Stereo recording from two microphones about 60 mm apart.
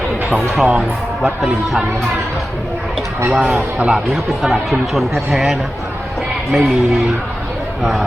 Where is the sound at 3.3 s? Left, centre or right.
Right.